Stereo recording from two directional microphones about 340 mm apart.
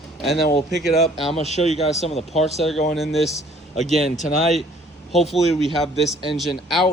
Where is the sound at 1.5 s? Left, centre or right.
Centre.